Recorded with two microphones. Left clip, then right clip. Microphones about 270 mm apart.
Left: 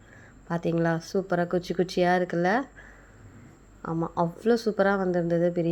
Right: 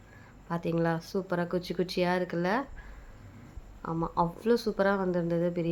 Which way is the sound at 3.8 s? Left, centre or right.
Centre.